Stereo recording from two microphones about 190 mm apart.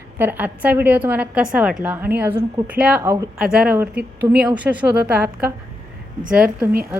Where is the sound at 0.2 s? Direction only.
10° right (ahead or behind).